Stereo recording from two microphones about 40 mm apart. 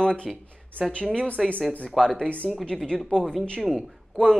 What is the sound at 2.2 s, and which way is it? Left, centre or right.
Speech, left.